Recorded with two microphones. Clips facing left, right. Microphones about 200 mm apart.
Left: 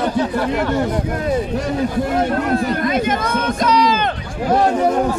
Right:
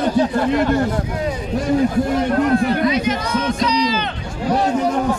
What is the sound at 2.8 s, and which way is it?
A man's voice, 50° left (ahead or behind).